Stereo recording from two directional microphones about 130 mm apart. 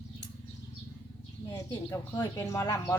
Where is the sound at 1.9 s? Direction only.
25° left (ahead or behind).